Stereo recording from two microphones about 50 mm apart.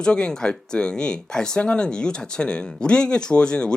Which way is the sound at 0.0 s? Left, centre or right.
Centre.